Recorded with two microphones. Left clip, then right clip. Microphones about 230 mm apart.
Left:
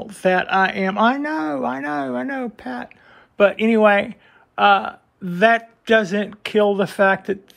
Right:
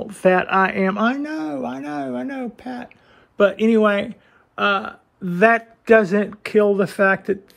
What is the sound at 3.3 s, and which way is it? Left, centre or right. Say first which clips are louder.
Speech: even; centre.